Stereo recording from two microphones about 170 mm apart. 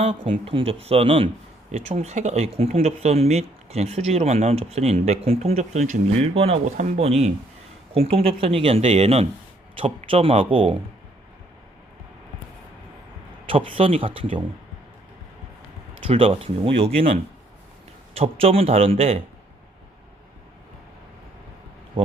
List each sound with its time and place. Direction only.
0.0 s speech: 40° right (ahead or behind)
13.5 s speech: 30° right (ahead or behind)
16.0 s speech: 30° right (ahead or behind)